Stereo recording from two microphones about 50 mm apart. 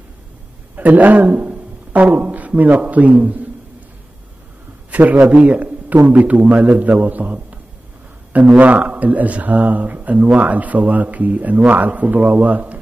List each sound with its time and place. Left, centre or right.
0.7 s a man's voice: right
5.2 s a man's voice: right